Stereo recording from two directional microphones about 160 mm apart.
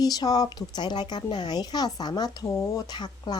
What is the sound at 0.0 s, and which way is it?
Speech, 25° left (ahead or behind).